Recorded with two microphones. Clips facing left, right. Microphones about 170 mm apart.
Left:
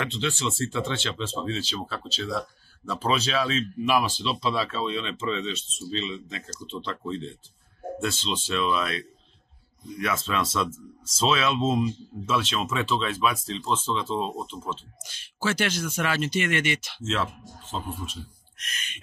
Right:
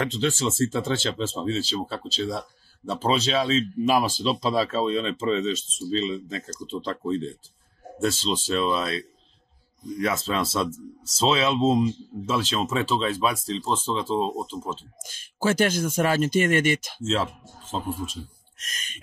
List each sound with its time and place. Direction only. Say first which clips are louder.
0.0 s speech: right 4 dB; 40° right (ahead or behind)
14.7 s speech: right 1 dB; 45° right (ahead or behind)
17.0 s speech: right 1 dB; 30° right (ahead or behind)
18.6 s speech: left 1 dB; 40° right (ahead or behind)